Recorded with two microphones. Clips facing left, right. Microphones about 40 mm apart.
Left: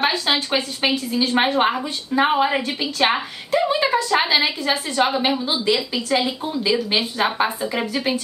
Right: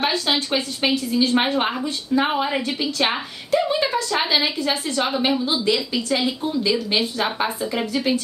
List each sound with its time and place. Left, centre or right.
0.0 s a woman's voice: centre